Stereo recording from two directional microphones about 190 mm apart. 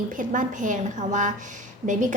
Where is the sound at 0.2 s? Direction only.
45° right (ahead or behind).